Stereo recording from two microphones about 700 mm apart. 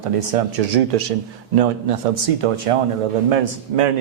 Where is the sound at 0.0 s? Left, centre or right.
Right.